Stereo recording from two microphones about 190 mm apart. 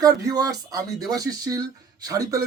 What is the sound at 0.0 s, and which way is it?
Speech, 20° right (ahead or behind).